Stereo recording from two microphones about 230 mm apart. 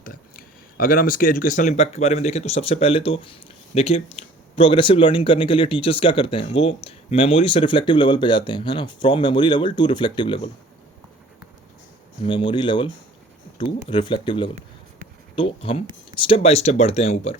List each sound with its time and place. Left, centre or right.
0.0 s speech: left
12.2 s speech: left